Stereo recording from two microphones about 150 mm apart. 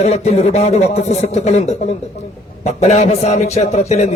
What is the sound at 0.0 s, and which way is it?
A man's voice, 45° left (ahead or behind).